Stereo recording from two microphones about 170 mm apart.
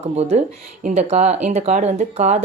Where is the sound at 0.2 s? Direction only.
40° right (ahead or behind).